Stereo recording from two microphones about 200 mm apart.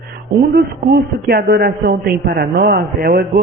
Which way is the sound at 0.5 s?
50° right (ahead or behind).